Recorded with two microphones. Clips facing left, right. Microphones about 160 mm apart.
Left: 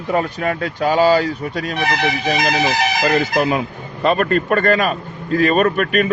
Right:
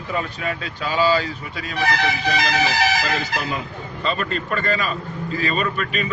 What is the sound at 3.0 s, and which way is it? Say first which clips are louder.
Speech: left 9 dB; 60° left (ahead or behind).